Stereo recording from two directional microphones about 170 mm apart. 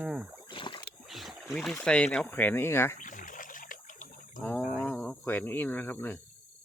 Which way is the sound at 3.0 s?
50° left (ahead or behind).